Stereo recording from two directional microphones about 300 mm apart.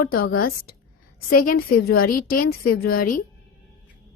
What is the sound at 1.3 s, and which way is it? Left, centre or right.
Speech, left.